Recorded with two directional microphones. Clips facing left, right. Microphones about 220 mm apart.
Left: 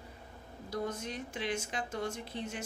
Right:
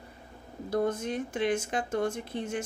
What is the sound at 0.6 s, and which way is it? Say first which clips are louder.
Speech: right 8 dB; 55° right (ahead or behind).